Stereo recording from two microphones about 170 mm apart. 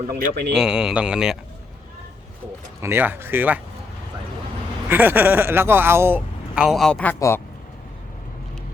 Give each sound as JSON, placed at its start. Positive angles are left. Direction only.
{"t": 0.2, "sound": "speech", "side_deg": -75}
{"t": 0.5, "sound": "speech", "side_deg": -5}
{"t": 2.8, "sound": "speech", "side_deg": -10}
{"t": 4.9, "sound": "speech", "side_deg": -10}
{"t": 6.7, "sound": "speech", "side_deg": 0}